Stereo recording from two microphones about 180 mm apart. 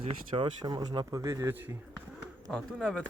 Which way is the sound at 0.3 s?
20° right (ahead or behind).